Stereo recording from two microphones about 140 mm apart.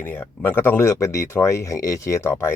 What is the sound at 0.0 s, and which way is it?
Speech, 15° left (ahead or behind).